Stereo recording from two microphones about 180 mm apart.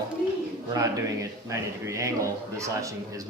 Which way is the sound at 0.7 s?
20° right (ahead or behind).